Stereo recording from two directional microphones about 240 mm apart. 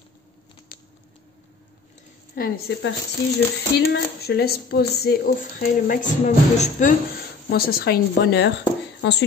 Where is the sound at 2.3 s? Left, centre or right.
Left.